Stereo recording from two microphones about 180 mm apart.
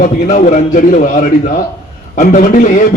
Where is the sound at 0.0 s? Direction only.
45° left (ahead or behind).